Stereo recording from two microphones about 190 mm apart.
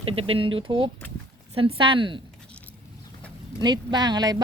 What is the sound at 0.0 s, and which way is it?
Speech, 30° right (ahead or behind).